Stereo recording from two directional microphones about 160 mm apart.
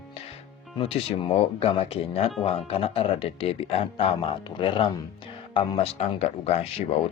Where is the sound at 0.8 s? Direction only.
35° left (ahead or behind).